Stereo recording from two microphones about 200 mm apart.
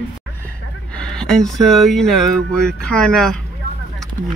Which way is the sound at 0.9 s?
5° left (ahead or behind).